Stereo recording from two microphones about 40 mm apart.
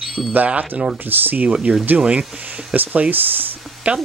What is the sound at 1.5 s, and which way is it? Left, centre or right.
Speech, right.